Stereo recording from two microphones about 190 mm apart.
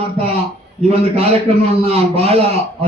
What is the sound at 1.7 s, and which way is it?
Speech, 30° right (ahead or behind).